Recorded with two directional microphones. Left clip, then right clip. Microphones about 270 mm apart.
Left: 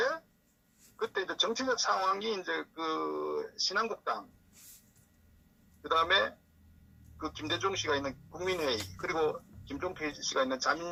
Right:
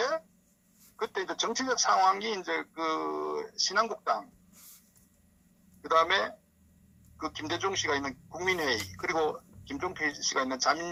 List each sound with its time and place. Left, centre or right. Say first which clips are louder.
0.9 s speech: even; centre
5.8 s speech: right 2 dB; centre